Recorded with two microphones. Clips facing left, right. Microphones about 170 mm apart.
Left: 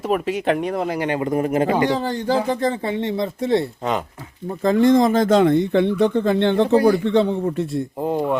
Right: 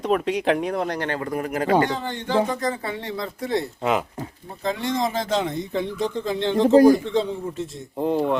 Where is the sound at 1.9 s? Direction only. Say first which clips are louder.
Left 3 dB; 35° left (ahead or behind).